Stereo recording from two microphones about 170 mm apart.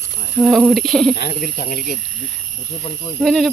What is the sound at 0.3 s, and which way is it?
Speech, 5° right (ahead or behind).